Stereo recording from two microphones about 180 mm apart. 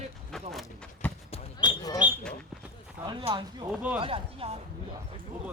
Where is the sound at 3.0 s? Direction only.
25° right (ahead or behind).